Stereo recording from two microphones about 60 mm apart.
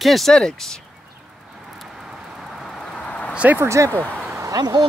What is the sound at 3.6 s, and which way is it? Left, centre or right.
Speech, right.